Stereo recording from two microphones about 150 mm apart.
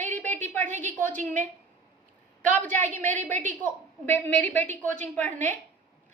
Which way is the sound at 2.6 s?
55° right (ahead or behind).